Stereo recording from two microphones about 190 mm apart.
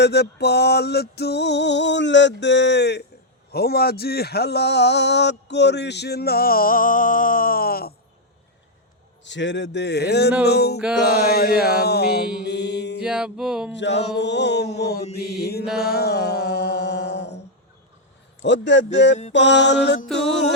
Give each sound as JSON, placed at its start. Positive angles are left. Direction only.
{"t": 0.0, "sound": "speech", "side_deg": 60}
{"t": 9.2, "sound": "speech", "side_deg": 70}
{"t": 13.0, "sound": "music", "side_deg": -5}
{"t": 14.2, "sound": "speech", "side_deg": 65}
{"t": 15.8, "sound": "music", "side_deg": 55}
{"t": 18.4, "sound": "mantra", "side_deg": 70}